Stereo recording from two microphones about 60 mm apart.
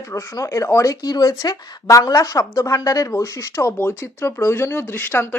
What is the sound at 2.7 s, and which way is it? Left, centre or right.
Speech, left.